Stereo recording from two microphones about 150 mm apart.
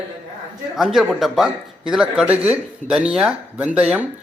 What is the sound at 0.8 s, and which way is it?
Speech, centre (ahead or behind).